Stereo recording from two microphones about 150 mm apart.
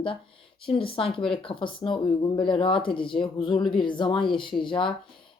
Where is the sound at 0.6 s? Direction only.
35° left (ahead or behind).